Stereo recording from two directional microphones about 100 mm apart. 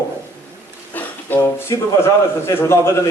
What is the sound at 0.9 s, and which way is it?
Music, 20° left (ahead or behind).